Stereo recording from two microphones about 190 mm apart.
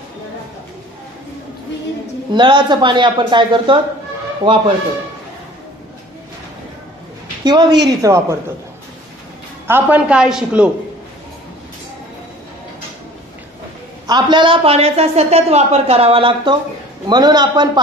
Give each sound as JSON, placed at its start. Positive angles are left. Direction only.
{"t": 2.3, "sound": "speech", "side_deg": -25}
{"t": 7.4, "sound": "a woman's voice", "side_deg": -25}
{"t": 9.7, "sound": "a woman's voice", "side_deg": -10}
{"t": 14.0, "sound": "a man's voice", "side_deg": -25}